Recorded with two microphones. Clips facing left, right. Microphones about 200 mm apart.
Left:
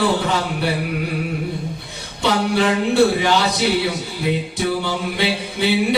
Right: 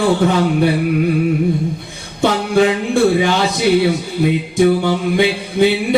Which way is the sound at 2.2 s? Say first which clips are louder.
Right 4 dB; 45° right (ahead or behind).